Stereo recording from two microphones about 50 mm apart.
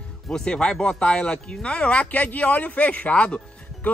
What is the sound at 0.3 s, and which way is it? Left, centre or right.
Speech, centre.